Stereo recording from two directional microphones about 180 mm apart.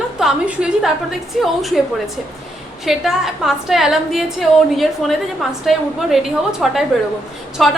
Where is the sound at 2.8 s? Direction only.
Centre (ahead or behind).